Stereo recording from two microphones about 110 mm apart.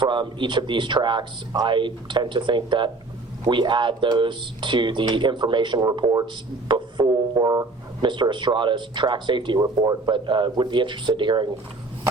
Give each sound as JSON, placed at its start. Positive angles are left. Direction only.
{"t": 0.0, "sound": "speech", "side_deg": -45}
{"t": 6.7, "sound": "music", "side_deg": -45}
{"t": 8.0, "sound": "speech", "side_deg": -45}